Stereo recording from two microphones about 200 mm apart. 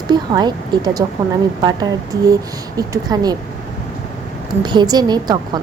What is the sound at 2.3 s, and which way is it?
Speech, 15° right (ahead or behind).